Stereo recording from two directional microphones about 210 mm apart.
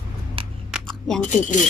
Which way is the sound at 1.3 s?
35° left (ahead or behind).